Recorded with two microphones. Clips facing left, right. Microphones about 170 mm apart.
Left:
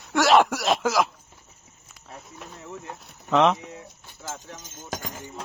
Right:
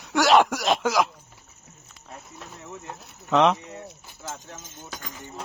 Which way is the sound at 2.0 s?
Centre (ahead or behind).